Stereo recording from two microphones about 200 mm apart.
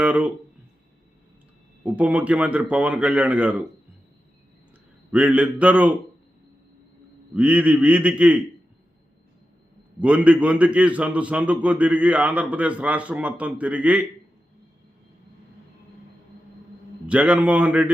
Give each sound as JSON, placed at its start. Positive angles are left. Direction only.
{"t": 0.0, "sound": "speech", "side_deg": -5}
{"t": 1.8, "sound": "a man's voice", "side_deg": -5}
{"t": 5.1, "sound": "a man's voice", "side_deg": -5}
{"t": 7.3, "sound": "a man's voice", "side_deg": -5}
{"t": 10.0, "sound": "a man's voice", "side_deg": -5}
{"t": 17.1, "sound": "a man's voice", "side_deg": -5}